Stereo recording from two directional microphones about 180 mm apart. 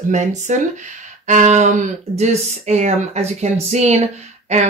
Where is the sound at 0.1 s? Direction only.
40° right (ahead or behind).